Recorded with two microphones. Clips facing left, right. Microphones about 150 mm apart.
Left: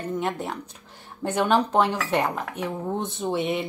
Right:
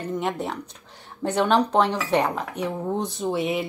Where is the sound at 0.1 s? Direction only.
5° left (ahead or behind).